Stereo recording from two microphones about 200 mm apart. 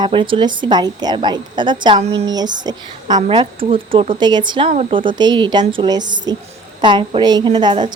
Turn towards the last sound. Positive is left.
turn(degrees=-20)  # may be behind; listen again after turning